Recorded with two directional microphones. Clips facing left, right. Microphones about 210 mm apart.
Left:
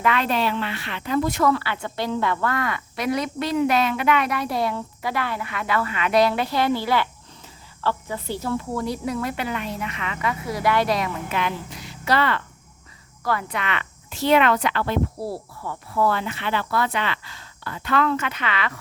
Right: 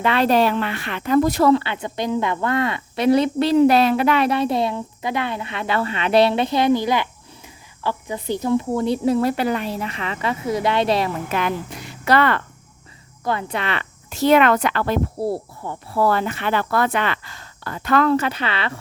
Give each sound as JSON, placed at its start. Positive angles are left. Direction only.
{"t": 0.0, "sound": "speech", "side_deg": -35}
{"t": 11.3, "sound": "speech", "side_deg": -45}
{"t": 13.2, "sound": "speech", "side_deg": -25}
{"t": 15.2, "sound": "speech", "side_deg": -25}